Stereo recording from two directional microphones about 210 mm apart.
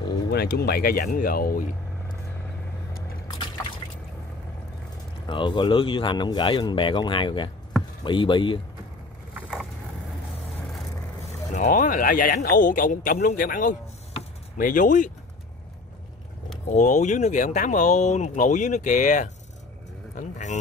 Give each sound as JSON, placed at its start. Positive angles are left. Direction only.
{"t": 0.3, "sound": "speech", "side_deg": 50}
{"t": 3.3, "sound": "liquid", "side_deg": 20}
{"t": 5.3, "sound": "speech", "side_deg": 20}
{"t": 9.3, "sound": "vehicle", "side_deg": -5}
{"t": 11.5, "sound": "speech", "side_deg": 35}
{"t": 16.6, "sound": "speech", "side_deg": 35}
{"t": 20.2, "sound": "vehicle", "side_deg": 35}